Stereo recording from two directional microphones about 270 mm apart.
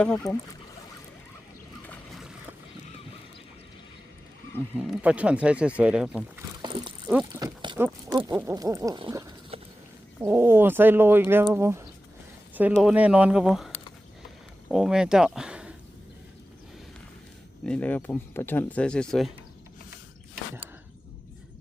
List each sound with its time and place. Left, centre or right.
0.0 s speech: centre
1.9 s boat: centre
4.8 s speech: centre
6.6 s a sound: centre
7.1 s speech: centre
17.7 s speech: centre